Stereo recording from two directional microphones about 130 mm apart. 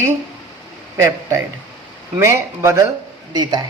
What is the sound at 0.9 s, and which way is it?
A man's voice, 20° right (ahead or behind).